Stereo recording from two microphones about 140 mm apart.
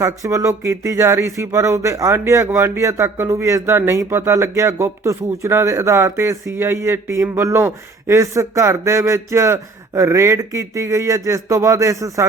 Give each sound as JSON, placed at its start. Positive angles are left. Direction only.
{"t": 0.0, "sound": "speech", "side_deg": -20}